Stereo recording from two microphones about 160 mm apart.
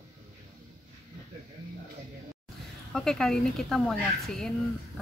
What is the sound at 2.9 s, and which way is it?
Speech, 5° left (ahead or behind).